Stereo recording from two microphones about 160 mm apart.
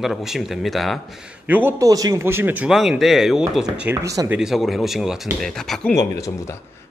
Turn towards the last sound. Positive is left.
turn(degrees=20)  # may be behind; listen again after turning